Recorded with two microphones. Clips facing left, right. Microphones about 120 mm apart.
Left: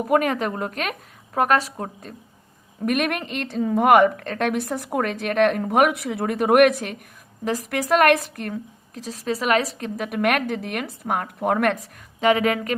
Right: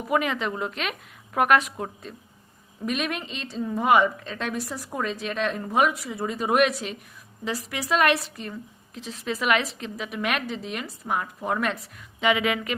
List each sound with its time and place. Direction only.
0.0 s a woman's voice: 45° left (ahead or behind)
1.3 s a woman's voice: 35° left (ahead or behind)
1.8 s a woman's voice: 45° left (ahead or behind)
2.8 s a woman's voice: 55° left (ahead or behind)
9.0 s a woman's voice: 40° left (ahead or behind); by 11.8 s 60° left (ahead or behind)
11.8 s a woman's voice: 40° left (ahead or behind)